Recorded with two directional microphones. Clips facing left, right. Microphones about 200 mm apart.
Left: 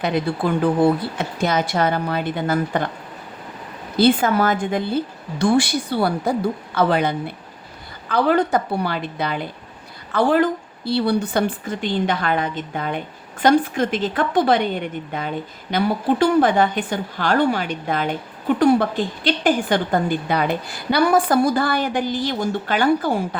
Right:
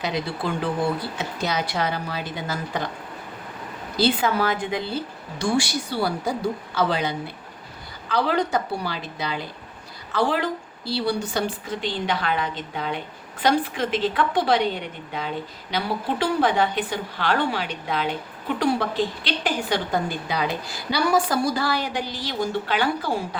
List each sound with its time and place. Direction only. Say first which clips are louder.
0.0 s a woman's voice: left 6 dB; 55° left (ahead or behind)
3.9 s a woman's voice: left 5 dB; 50° left (ahead or behind)